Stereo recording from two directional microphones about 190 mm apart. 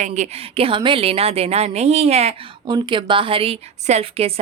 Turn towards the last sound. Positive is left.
turn(degrees=-30)  # may be behind; listen again after turning